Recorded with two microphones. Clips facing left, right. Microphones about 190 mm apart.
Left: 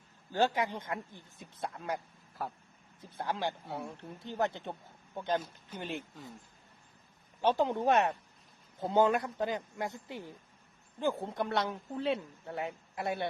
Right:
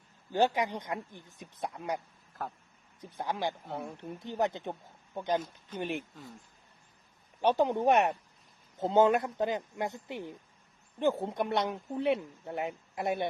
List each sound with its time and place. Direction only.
0.3 s speech: 15° right (ahead or behind)
3.0 s speech: 15° right (ahead or behind)
7.4 s speech: 15° right (ahead or behind)